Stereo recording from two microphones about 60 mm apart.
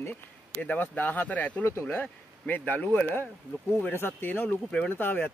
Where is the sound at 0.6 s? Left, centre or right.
Left.